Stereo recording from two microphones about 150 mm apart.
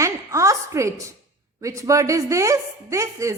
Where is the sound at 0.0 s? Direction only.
20° right (ahead or behind).